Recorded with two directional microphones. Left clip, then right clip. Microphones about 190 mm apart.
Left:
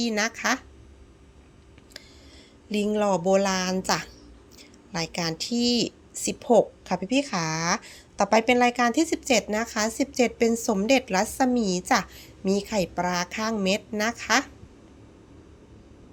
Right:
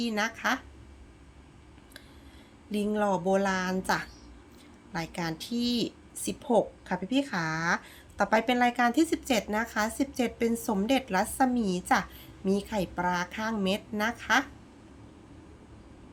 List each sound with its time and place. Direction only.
0.0 s a woman's voice: 20° left (ahead or behind)
2.6 s a woman's voice: 25° left (ahead or behind)